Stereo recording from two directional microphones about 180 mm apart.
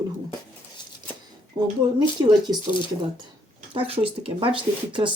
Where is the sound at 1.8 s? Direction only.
25° right (ahead or behind).